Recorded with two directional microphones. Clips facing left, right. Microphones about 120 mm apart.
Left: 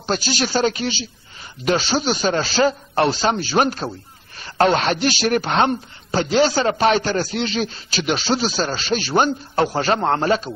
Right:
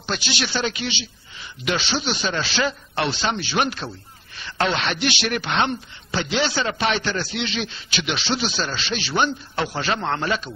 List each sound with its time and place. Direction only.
0.0 s speech: 40° left (ahead or behind)